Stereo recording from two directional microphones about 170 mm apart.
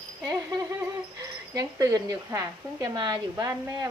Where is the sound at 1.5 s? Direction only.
20° right (ahead or behind).